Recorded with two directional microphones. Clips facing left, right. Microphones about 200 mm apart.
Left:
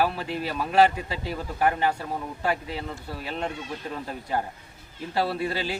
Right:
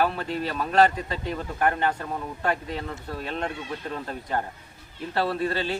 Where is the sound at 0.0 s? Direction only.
10° left (ahead or behind).